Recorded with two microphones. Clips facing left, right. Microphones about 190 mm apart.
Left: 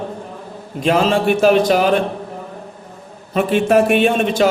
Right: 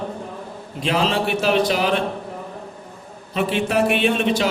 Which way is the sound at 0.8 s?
45° left (ahead or behind).